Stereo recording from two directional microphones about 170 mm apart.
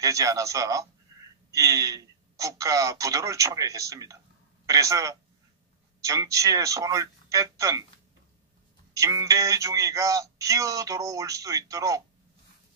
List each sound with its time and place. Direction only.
0.0 s speech: 20° right (ahead or behind)
1.1 s a sound: 20° right (ahead or behind)
1.5 s speech: 20° right (ahead or behind)
8.9 s speech: 20° right (ahead or behind)